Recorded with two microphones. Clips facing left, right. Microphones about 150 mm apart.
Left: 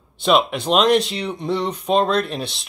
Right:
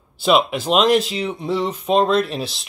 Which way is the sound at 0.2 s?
Centre (ahead or behind).